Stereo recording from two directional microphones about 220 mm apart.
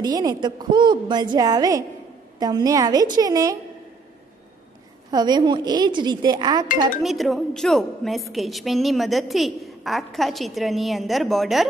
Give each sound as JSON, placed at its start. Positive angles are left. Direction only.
{"t": 0.0, "sound": "a woman's voice", "side_deg": -15}
{"t": 5.1, "sound": "a woman's voice", "side_deg": -20}
{"t": 7.0, "sound": "a woman's voice", "side_deg": 0}